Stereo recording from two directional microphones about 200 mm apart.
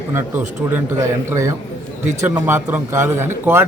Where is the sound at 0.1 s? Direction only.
10° right (ahead or behind).